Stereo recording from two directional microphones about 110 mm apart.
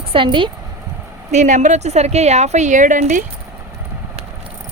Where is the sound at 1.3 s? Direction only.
90° right.